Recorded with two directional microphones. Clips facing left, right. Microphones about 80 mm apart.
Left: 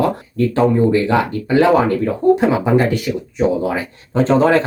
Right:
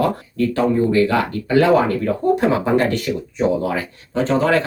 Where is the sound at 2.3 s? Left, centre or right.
Centre.